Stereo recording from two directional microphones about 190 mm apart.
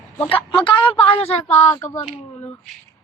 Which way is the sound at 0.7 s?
25° left (ahead or behind).